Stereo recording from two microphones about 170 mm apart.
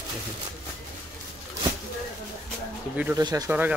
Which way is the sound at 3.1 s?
20° right (ahead or behind).